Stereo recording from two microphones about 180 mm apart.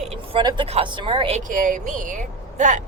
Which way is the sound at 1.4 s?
45° right (ahead or behind).